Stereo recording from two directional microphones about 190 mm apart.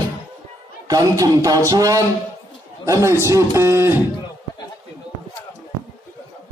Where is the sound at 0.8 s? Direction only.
20° right (ahead or behind).